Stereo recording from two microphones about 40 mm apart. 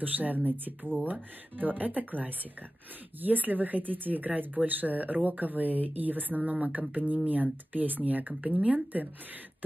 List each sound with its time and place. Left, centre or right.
0.0 s speech: right